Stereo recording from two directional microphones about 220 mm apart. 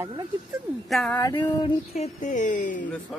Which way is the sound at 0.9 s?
5° left (ahead or behind).